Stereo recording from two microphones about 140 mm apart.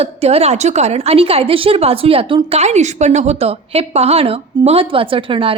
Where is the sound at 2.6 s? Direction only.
55° right (ahead or behind).